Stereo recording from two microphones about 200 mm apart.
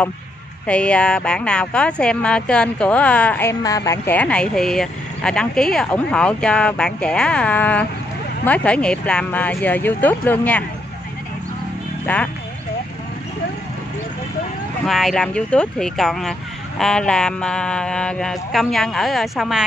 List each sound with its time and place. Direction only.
0.7 s speech: 5° left (ahead or behind)
12.1 s speech: 10° left (ahead or behind)
14.9 s speech: centre (ahead or behind)